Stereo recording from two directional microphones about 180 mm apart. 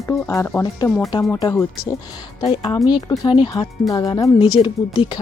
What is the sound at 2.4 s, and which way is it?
A woman's voice, 30° left (ahead or behind).